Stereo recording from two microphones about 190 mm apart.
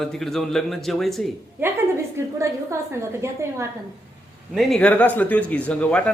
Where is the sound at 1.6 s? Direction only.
10° right (ahead or behind).